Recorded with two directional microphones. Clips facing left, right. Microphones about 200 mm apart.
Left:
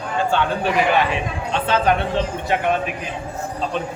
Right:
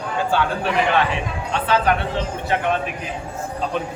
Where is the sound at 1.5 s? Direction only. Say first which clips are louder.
Even; 25° left (ahead or behind).